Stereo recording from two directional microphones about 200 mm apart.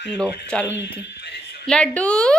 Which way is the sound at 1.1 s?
60° left (ahead or behind).